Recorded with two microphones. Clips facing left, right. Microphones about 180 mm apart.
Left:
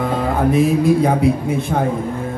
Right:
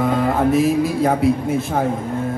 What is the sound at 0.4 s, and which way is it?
A man's voice, centre (ahead or behind).